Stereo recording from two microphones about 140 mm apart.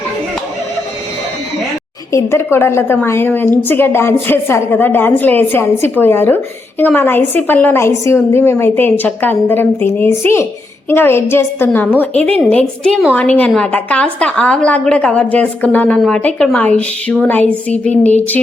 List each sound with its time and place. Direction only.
2.1 s a woman's voice: 20° left (ahead or behind)